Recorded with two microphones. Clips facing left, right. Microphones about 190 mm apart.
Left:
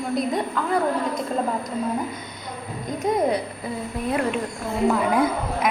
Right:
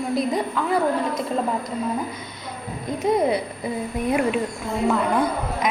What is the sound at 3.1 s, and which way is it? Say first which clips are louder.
Speech: right 1 dB; 5° right (ahead or behind).